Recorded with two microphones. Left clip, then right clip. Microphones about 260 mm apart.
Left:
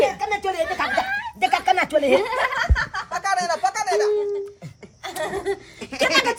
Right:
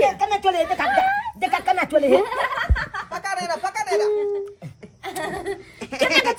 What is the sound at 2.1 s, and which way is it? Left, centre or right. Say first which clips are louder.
Snicker: even; left.